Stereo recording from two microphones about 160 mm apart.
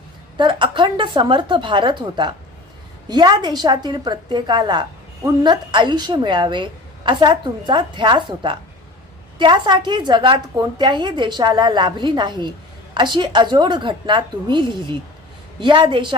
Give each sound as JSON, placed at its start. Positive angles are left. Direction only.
{"t": 0.3, "sound": "a woman's voice", "side_deg": -30}